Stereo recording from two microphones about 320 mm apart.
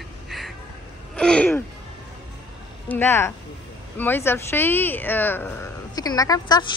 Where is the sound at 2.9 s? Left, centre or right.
Centre.